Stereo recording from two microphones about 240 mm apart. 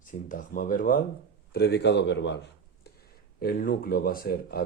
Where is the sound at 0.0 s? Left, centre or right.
Left.